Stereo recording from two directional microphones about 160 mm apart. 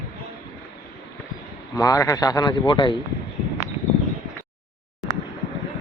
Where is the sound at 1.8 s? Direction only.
20° left (ahead or behind).